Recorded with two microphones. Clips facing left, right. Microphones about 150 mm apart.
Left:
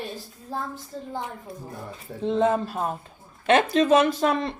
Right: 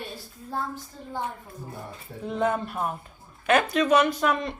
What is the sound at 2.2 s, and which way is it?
A woman's voice, 30° left (ahead or behind).